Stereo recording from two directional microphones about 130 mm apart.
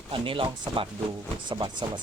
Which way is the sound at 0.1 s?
40° right (ahead or behind).